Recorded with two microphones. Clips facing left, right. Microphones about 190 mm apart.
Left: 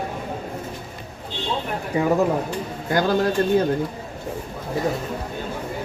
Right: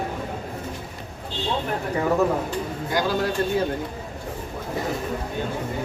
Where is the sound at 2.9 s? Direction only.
50° left (ahead or behind).